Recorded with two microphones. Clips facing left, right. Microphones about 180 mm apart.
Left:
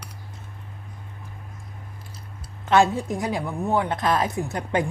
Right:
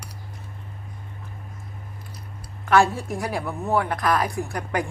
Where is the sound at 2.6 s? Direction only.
20° left (ahead or behind).